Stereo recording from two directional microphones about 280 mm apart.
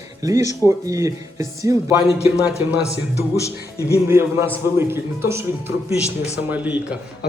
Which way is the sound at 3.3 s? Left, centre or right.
Centre.